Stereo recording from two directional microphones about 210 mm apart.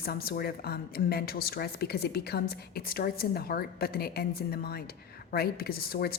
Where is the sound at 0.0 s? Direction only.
45° left (ahead or behind).